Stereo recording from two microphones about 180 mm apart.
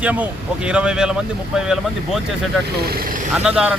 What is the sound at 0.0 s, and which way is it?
Speech, 10° right (ahead or behind).